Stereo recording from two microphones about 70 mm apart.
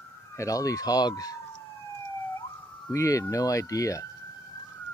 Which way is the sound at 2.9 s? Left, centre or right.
Left.